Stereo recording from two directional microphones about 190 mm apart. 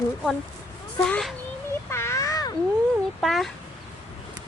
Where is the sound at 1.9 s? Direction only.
15° left (ahead or behind).